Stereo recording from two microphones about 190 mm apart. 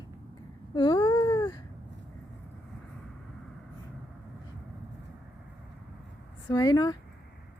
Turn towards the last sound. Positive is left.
turn(degrees=20)  # may be behind; listen again after turning